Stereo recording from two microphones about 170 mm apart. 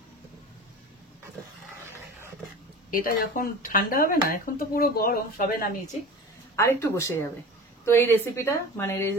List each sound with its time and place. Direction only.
1.9 s dog: 15° right (ahead or behind)
2.9 s speech: 55° left (ahead or behind)
6.5 s speech: 15° left (ahead or behind)